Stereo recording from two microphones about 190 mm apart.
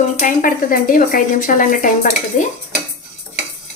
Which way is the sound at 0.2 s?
45° left (ahead or behind).